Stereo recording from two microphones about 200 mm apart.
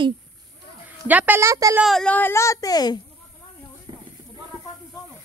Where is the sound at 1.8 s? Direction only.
5° left (ahead or behind); by 2.9 s 20° left (ahead or behind).